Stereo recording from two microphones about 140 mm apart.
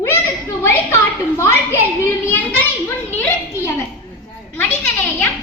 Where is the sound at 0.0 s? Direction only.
15° left (ahead or behind).